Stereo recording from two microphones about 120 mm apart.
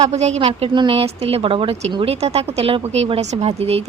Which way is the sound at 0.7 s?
50° right (ahead or behind).